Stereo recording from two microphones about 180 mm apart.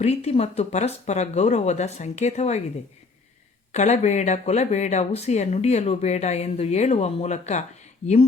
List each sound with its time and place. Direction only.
0.0 s speech: 35° left (ahead or behind)
3.7 s speech: 40° left (ahead or behind)